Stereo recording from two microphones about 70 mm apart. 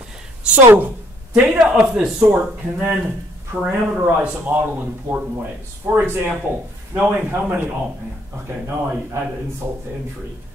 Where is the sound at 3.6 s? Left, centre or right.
Centre.